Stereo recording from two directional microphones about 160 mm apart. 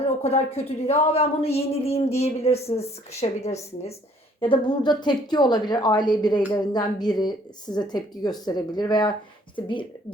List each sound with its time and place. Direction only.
0.2 s a woman's voice: 40° left (ahead or behind)
4.4 s a woman's voice: 30° left (ahead or behind)